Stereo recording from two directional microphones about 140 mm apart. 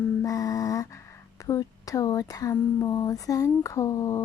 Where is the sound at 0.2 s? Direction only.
25° left (ahead or behind).